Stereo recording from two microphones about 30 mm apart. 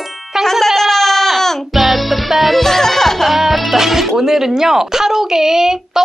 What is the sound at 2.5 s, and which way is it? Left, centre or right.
Music, centre.